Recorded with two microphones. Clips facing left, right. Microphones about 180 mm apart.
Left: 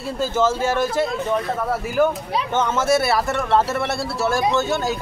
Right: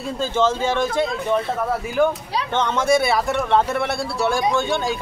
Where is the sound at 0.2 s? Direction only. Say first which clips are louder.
Even; 10° left (ahead or behind).